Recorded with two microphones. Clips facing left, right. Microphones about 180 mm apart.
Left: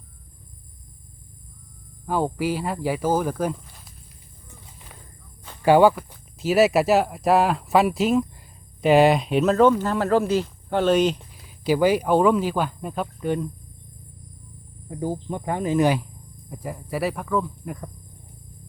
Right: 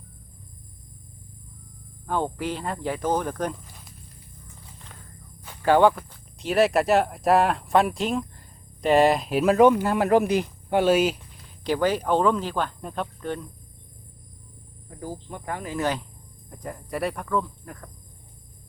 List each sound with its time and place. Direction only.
2.0 s speech: 5° left (ahead or behind)
5.6 s speech: 10° left (ahead or behind); by 11.2 s 5° right (ahead or behind)
11.4 s speech: 5° left (ahead or behind)
14.8 s speech: 20° left (ahead or behind)
16.5 s speech: 5° left (ahead or behind)